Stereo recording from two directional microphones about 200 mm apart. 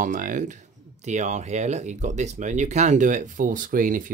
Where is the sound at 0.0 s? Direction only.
40° right (ahead or behind).